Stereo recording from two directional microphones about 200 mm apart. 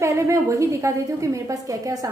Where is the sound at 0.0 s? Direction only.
15° right (ahead or behind).